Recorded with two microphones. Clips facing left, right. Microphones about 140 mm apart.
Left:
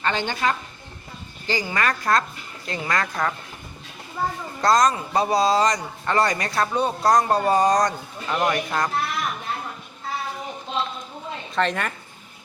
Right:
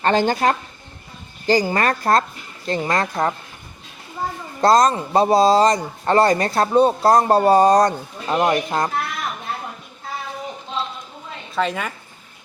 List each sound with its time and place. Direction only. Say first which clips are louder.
0.0 s a woman's voice: right 7 dB; 40° right (ahead or behind)
4.6 s speech: right 4 dB; 30° right (ahead or behind)
11.5 s a woman's voice: right 1 dB; 5° right (ahead or behind)